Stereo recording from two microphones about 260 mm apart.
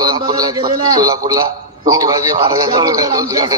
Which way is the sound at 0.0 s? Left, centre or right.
Centre.